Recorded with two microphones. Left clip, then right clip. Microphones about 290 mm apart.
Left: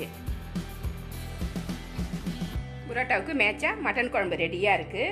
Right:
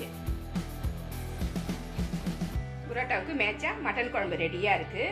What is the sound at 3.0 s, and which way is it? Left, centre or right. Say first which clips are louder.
A woman's voice: left 4 dB; left.